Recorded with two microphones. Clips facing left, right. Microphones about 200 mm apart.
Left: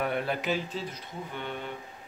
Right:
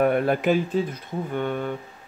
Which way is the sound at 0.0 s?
50° right (ahead or behind).